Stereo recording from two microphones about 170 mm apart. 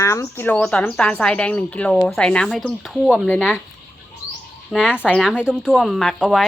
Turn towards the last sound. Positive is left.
turn(degrees=0)  # may be behind; listen again after turning